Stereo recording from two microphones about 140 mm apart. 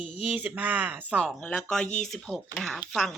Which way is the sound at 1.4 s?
10° left (ahead or behind).